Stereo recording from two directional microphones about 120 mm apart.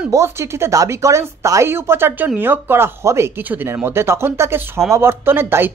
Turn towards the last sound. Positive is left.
turn(degrees=-20)  # may be behind; listen again after turning